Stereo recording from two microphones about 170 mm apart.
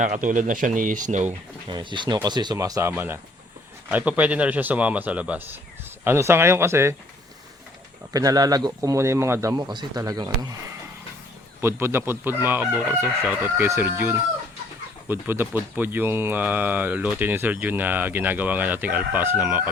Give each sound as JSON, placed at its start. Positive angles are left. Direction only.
{"t": 0.0, "sound": "speech", "side_deg": -50}
{"t": 1.6, "sound": "a man's voice", "side_deg": -30}
{"t": 8.1, "sound": "a man's voice", "side_deg": -20}
{"t": 11.6, "sound": "speech", "side_deg": -15}